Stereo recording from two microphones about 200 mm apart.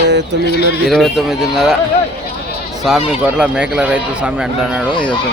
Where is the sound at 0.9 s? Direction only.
Centre (ahead or behind).